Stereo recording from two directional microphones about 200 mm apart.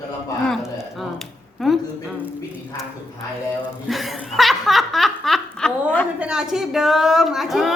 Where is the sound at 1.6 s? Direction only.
Centre (ahead or behind).